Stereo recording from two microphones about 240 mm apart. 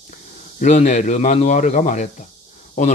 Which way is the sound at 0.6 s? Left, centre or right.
Left.